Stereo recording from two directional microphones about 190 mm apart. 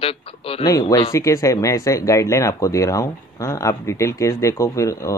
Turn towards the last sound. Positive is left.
turn(degrees=15)  # may be behind; listen again after turning